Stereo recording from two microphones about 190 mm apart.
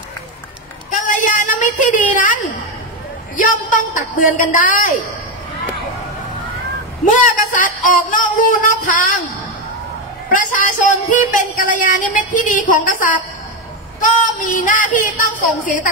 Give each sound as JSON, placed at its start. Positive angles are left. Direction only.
{"t": 1.0, "sound": "a sound", "side_deg": 45}
{"t": 3.3, "sound": "speech", "side_deg": 45}
{"t": 7.1, "sound": "speech", "side_deg": 45}
{"t": 10.3, "sound": "speech", "side_deg": 45}